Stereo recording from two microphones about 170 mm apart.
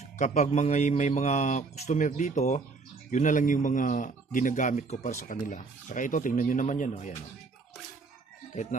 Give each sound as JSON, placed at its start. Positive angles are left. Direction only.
{"t": 0.2, "sound": "speech", "side_deg": 45}